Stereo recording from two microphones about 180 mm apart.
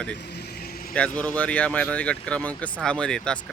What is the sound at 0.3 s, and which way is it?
Vehicle, 60° left (ahead or behind).